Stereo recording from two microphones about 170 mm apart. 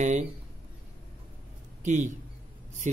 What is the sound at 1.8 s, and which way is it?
Speech, 45° right (ahead or behind).